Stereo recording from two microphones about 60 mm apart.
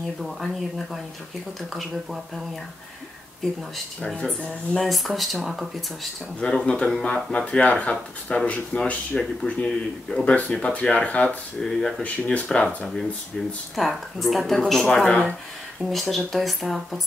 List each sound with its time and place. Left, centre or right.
0.2 s speech: centre
4.1 s speech: centre
4.7 s speech: centre
6.4 s speech: centre
11.6 s speech: centre
12.0 s speech: left
12.6 s speech: centre